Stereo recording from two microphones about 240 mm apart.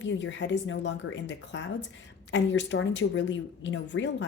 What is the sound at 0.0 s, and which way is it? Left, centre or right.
Speech, left.